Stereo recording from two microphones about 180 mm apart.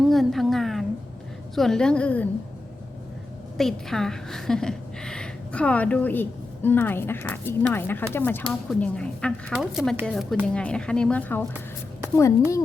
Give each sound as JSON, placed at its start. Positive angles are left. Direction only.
{"t": 0.0, "sound": "a sound", "side_deg": 0}
{"t": 1.5, "sound": "speech", "side_deg": 0}
{"t": 3.6, "sound": "a woman's voice", "side_deg": 0}